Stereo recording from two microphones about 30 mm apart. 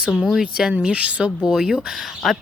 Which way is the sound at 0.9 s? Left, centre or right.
Right.